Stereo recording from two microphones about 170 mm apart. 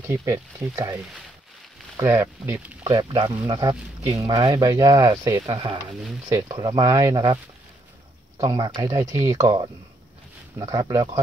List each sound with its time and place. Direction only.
0.0 s speech: 15° right (ahead or behind)
3.0 s speech: 25° right (ahead or behind)
5.9 s speech: centre (ahead or behind)
6.2 s speech: 20° right (ahead or behind)
8.4 s speech: 20° right (ahead or behind)